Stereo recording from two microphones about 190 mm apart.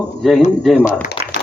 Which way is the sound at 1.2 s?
30° left (ahead or behind).